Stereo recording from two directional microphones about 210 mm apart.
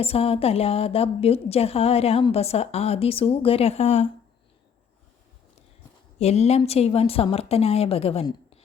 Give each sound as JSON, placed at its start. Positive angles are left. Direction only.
{"t": 0.0, "sound": "a woman's voice", "side_deg": 30}
{"t": 6.1, "sound": "a woman's voice", "side_deg": 30}